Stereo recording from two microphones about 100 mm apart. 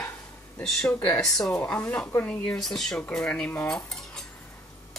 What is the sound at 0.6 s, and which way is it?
Speech, 5° left (ahead or behind).